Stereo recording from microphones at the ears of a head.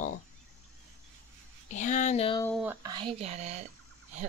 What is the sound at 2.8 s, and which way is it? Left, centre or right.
Speech, right.